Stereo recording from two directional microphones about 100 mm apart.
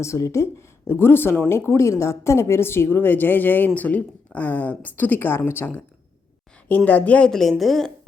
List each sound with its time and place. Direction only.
0.0 s a woman's voice: 30° left (ahead or behind); by 7.9 s centre (ahead or behind)